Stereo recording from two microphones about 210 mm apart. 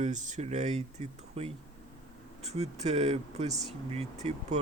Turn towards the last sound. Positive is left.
turn(degrees=-30)  # may be behind; listen again after turning